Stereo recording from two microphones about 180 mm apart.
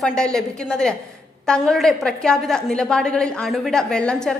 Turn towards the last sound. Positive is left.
turn(degrees=5)  # may be behind; listen again after turning